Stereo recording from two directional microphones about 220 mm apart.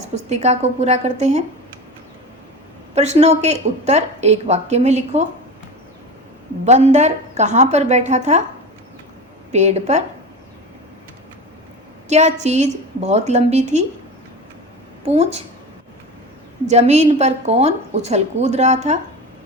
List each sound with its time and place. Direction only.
0.0 s a woman's voice: 30° right (ahead or behind)
2.9 s a woman's voice: 30° right (ahead or behind)
6.7 s a woman's voice: 30° right (ahead or behind)
9.5 s a woman's voice: 30° right (ahead or behind)
12.0 s a woman's voice: 30° right (ahead or behind)
15.0 s a woman's voice: 30° right (ahead or behind)
16.6 s a woman's voice: 30° right (ahead or behind)